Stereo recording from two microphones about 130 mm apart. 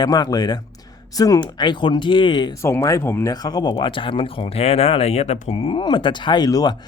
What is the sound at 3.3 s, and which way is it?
Speech, 30° left (ahead or behind).